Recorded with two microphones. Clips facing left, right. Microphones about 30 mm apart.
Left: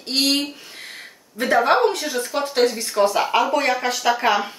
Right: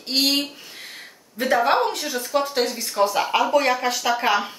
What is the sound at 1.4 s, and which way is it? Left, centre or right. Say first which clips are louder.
Speech: left 2 dB; centre.